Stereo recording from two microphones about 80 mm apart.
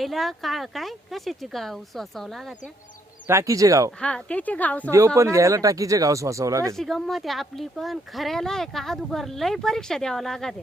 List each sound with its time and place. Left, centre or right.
0.0 s speech: centre
3.2 s speech: right
4.0 s a woman's voice: centre
4.9 s speech: right
6.7 s speech: centre